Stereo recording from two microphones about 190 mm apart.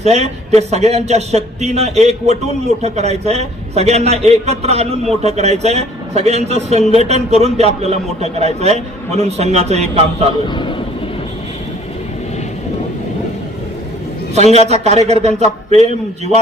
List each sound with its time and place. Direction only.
0.0 s a man's voice: 35° right (ahead or behind)
10.5 s speech: 25° left (ahead or behind)
14.3 s a man's voice: 35° right (ahead or behind)